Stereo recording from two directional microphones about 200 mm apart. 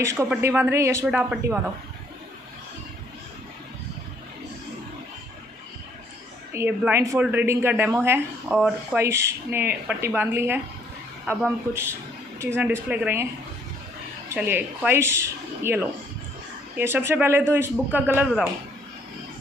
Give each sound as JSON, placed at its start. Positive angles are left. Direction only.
{"t": 0.0, "sound": "a woman's voice", "side_deg": -15}
{"t": 6.5, "sound": "a woman's voice", "side_deg": -10}
{"t": 14.3, "sound": "a woman's voice", "side_deg": -10}